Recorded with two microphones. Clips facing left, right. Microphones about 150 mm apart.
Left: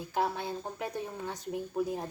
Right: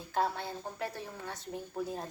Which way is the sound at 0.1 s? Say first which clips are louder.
Left 1 dB; 15° left (ahead or behind).